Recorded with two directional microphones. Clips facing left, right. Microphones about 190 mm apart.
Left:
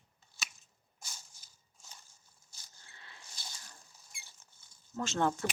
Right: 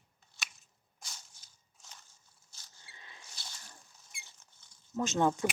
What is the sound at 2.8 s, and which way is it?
Rodents, 15° right (ahead or behind).